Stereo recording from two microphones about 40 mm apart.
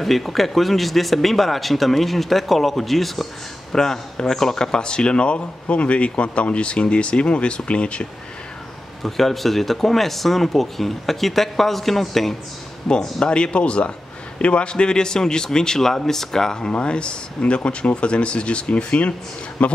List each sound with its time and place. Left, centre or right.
0.0 s speech: centre
3.7 s speech: centre
9.0 s a man's voice: centre
13.2 s a man's voice: left
16.7 s speech: left